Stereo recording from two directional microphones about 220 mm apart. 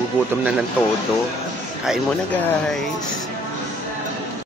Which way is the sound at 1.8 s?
Centre (ahead or behind).